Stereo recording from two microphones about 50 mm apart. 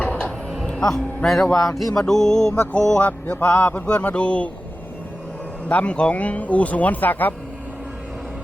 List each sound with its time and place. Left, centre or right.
0.7 s speech: centre
2.0 s music: centre
3.0 s speech: left
5.6 s speech: left